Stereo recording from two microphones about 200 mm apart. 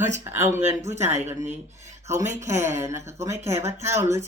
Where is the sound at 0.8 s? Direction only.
35° right (ahead or behind).